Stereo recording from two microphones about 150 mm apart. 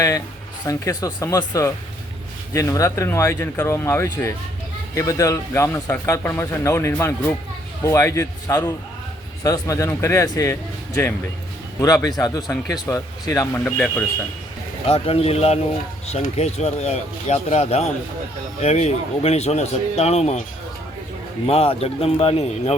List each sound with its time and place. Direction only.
0.6 s speech: 25° left (ahead or behind)
13.7 s a man's voice: 10° left (ahead or behind)
14.8 s speech: 40° left (ahead or behind)
21.4 s speech: 40° left (ahead or behind)